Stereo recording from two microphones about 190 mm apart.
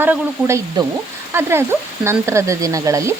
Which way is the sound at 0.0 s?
10° right (ahead or behind).